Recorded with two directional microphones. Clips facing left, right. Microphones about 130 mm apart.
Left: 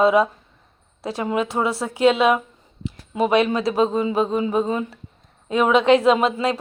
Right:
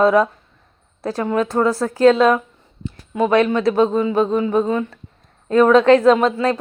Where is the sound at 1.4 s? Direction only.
Centre (ahead or behind).